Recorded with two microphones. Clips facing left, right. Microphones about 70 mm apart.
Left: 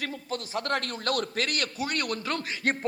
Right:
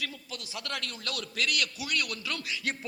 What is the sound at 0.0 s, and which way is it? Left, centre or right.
A man's voice, left.